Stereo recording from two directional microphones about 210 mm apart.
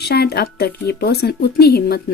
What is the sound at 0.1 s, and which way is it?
Speech, 50° left (ahead or behind).